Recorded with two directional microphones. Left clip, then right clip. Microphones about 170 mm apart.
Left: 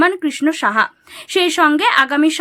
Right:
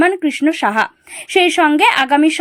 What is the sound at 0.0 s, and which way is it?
A woman's voice, 10° right (ahead or behind).